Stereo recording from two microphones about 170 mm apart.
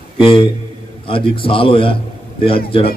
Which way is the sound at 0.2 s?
30° left (ahead or behind).